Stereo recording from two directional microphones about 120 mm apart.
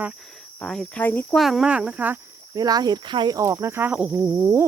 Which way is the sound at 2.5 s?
35° right (ahead or behind).